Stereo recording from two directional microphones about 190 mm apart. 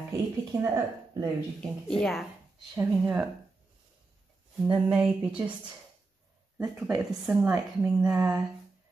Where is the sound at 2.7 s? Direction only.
10° right (ahead or behind).